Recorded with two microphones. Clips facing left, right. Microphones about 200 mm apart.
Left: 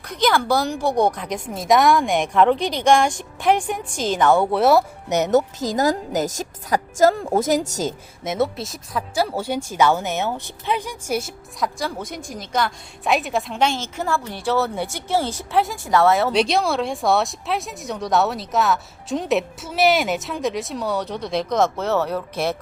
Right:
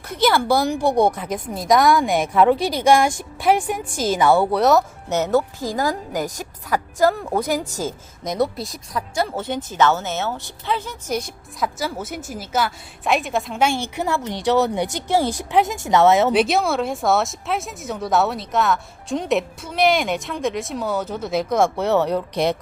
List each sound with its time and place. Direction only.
0.1 s a woman's voice: 10° right (ahead or behind)
5.0 s a woman's voice: 15° left (ahead or behind)
7.0 s a woman's voice: 25° left (ahead or behind)
8.2 s speech: 5° left (ahead or behind)
11.8 s speech: 5° right (ahead or behind); by 16.3 s 20° right (ahead or behind)
16.3 s speech: 5° right (ahead or behind)